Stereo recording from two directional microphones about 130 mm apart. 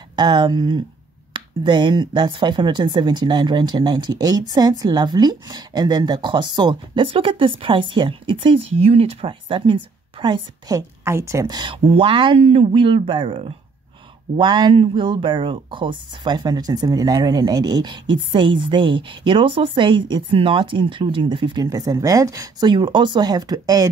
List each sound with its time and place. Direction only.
0.1 s speech: 35° right (ahead or behind)